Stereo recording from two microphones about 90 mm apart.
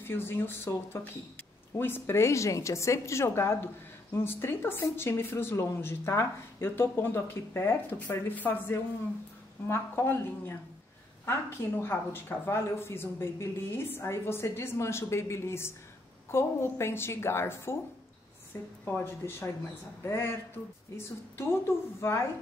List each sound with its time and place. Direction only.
0.0 s a woman's voice: 25° left (ahead or behind)